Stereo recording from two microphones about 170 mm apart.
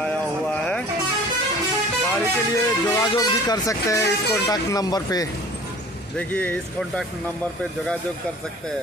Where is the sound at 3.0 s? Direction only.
25° left (ahead or behind).